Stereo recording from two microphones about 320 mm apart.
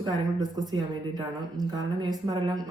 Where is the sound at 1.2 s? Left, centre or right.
Centre.